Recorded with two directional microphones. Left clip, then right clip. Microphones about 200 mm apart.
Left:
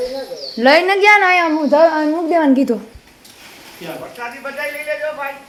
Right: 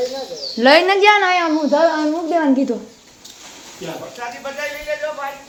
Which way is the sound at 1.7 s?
25° left (ahead or behind).